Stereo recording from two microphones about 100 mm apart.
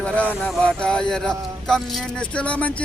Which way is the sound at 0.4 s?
10° left (ahead or behind).